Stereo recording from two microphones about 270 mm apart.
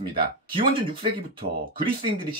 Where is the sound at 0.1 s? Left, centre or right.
Centre.